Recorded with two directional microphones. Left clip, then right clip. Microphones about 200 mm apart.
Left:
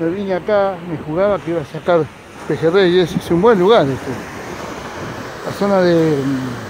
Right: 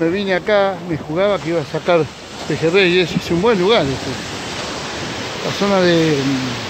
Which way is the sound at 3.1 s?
35° left (ahead or behind).